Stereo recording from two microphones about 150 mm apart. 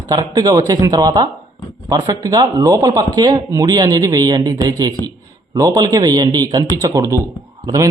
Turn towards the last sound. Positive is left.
turn(degrees=-20)  # may be behind; listen again after turning